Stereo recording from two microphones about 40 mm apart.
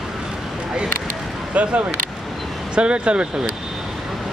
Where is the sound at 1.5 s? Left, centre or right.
Right.